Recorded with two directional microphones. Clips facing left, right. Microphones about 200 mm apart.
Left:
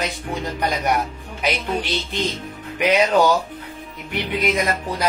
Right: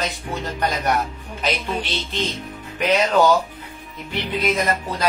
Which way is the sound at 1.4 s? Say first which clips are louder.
Left 1 dB; 15° left (ahead or behind).